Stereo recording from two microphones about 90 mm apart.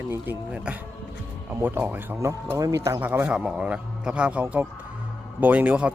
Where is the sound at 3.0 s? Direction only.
25° right (ahead or behind).